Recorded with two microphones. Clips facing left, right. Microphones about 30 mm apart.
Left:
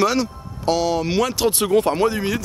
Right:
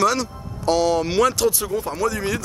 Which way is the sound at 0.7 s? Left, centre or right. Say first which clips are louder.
Right 1 dB; centre.